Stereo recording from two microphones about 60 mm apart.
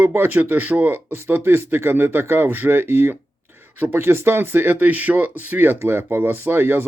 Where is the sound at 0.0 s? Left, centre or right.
Right.